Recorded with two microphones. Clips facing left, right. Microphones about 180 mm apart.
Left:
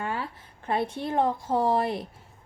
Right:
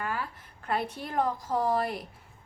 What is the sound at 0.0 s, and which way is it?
A woman's voice, 25° left (ahead or behind).